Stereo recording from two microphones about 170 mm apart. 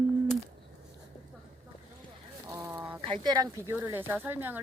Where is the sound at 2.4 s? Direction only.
20° right (ahead or behind).